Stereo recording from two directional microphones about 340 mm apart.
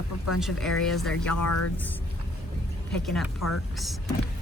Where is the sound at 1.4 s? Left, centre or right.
Left.